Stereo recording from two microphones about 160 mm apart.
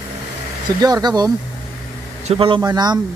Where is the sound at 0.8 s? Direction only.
25° right (ahead or behind).